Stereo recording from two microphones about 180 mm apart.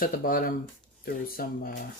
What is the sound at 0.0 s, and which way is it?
Speech, 50° left (ahead or behind).